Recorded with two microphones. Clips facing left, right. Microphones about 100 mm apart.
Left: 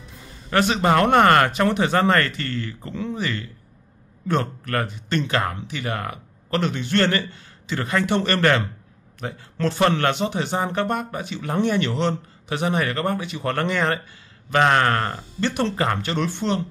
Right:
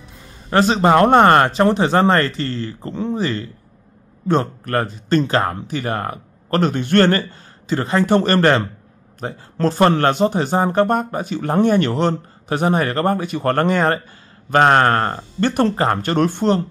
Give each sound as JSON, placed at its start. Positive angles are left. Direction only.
{"t": 0.5, "sound": "speech", "side_deg": -35}